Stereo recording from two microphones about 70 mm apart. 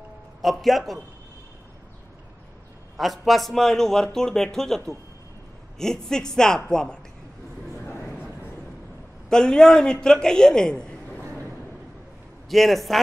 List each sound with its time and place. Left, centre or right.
0.4 s a man's voice: centre
3.0 s a man's voice: centre
7.7 s a sound: left
9.3 s a man's voice: centre
12.4 s a man's voice: centre